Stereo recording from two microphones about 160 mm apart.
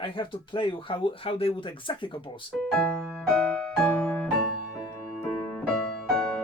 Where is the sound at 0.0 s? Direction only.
30° left (ahead or behind).